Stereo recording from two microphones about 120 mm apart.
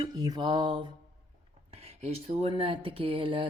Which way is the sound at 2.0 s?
60° right (ahead or behind).